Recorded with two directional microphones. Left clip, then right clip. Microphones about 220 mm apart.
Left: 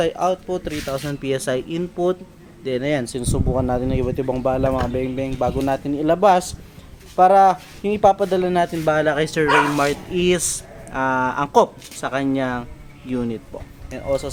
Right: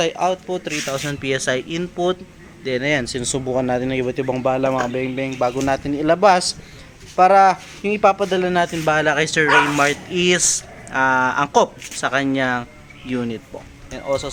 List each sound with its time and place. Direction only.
0.0 s speech: 15° left (ahead or behind)